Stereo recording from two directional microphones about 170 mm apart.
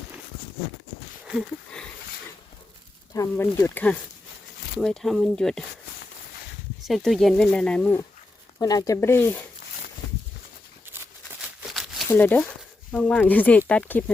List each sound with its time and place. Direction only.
1.2 s speech: centre (ahead or behind)
3.1 s speech: 15° left (ahead or behind)
6.8 s speech: centre (ahead or behind)
8.5 s speech: 20° left (ahead or behind)
11.7 s a sound: centre (ahead or behind)
12.0 s speech: 10° left (ahead or behind)